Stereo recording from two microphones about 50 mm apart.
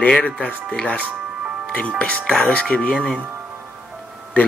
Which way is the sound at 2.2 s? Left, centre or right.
Centre.